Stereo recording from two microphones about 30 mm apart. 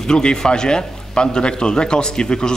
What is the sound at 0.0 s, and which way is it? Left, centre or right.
Speech, left.